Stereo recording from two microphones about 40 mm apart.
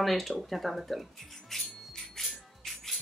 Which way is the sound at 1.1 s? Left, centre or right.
Centre.